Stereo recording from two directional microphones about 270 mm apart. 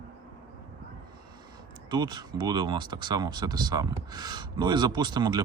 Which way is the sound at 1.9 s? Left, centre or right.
Centre.